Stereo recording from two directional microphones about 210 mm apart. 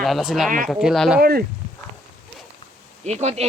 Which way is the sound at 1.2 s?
45° right (ahead or behind).